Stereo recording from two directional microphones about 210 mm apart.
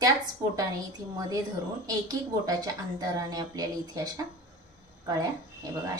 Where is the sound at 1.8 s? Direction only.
20° right (ahead or behind).